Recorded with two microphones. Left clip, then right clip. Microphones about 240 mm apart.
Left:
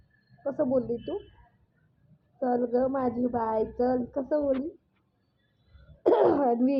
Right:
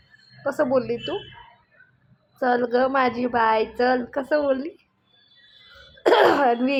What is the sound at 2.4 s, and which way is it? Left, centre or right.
A woman's voice, right.